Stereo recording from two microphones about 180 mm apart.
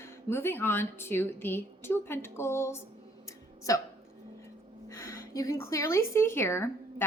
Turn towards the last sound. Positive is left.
turn(degrees=15)  # may be behind; listen again after turning